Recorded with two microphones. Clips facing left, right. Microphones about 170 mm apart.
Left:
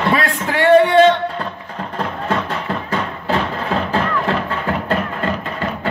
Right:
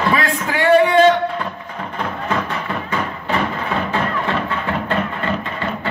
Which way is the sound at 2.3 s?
30° left (ahead or behind).